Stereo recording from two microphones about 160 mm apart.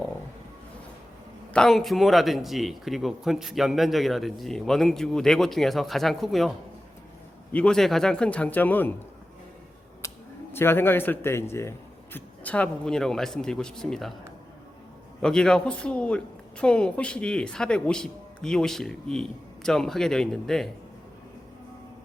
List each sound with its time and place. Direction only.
1.5 s speech: 5° left (ahead or behind)
7.5 s speech: 5° left (ahead or behind)
10.0 s a sound: 20° left (ahead or behind)
10.5 s speech: 15° left (ahead or behind)
15.2 s speech: 5° left (ahead or behind)